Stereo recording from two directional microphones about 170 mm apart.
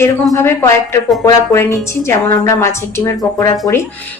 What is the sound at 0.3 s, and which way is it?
A woman's voice, 15° left (ahead or behind).